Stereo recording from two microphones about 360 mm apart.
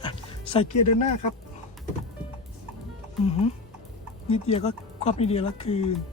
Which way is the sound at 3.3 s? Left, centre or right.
Centre.